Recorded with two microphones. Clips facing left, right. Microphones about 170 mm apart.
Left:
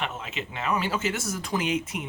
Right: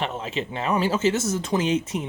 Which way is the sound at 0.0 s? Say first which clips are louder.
Right 5 dB; 30° right (ahead or behind).